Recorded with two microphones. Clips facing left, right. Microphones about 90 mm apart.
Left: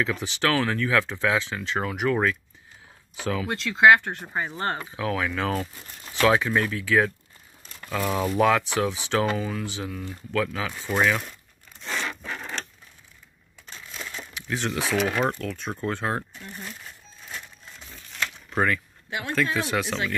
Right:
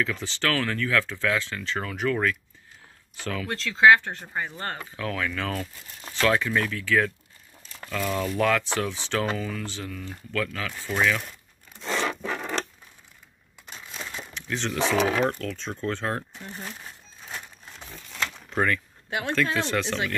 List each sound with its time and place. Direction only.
0.0 s speech: 15° left (ahead or behind)
4.9 s speech: 10° left (ahead or behind)
11.9 s rub: 80° right
13.7 s crushing: 15° right (ahead or behind)
14.3 s speech: 5° left (ahead or behind)
16.3 s speech: 25° right (ahead or behind)
18.5 s speech: 5° left (ahead or behind)